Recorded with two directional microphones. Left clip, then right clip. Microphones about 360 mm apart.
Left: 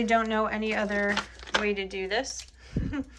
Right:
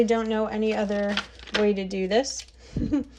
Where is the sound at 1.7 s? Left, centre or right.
Centre.